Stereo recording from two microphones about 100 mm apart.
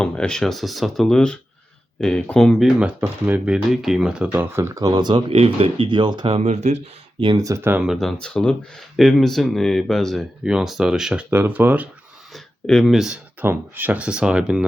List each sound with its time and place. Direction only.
0.0 s speech: 10° left (ahead or behind)
3.0 s speech: 20° right (ahead or behind)
4.8 s speech: 40° right (ahead or behind)
5.3 s speech: 70° right (ahead or behind); by 6.8 s 90° right
7.3 s speech: 35° right (ahead or behind)
7.6 s speech: 20° right (ahead or behind)
7.9 s speech: 5° left (ahead or behind)
11.3 s speech: 20° right (ahead or behind)
12.3 s speech: 5° left (ahead or behind)
13.4 s speech: 20° right (ahead or behind)